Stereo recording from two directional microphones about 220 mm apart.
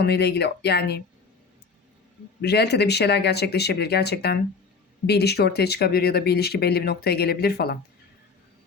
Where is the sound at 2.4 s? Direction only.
50° left (ahead or behind).